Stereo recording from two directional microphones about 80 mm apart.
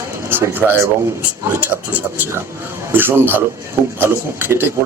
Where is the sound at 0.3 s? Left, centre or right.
Right.